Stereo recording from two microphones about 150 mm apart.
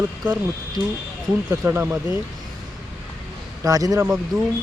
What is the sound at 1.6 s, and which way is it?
Speech, 15° right (ahead or behind).